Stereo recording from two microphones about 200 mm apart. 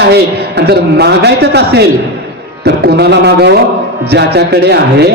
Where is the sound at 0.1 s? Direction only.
55° right (ahead or behind).